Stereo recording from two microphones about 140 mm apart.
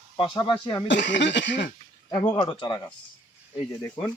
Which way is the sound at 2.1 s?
30° left (ahead or behind).